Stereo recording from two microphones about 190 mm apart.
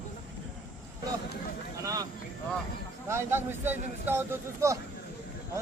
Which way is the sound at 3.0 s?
10° right (ahead or behind).